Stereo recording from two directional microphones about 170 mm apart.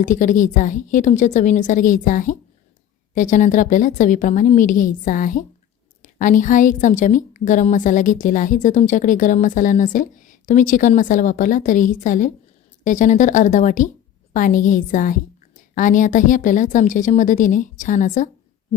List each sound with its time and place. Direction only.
0.0 s a woman's voice: 50° left (ahead or behind)